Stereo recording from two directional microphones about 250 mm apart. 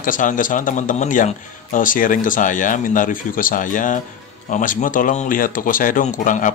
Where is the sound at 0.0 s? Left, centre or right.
Left.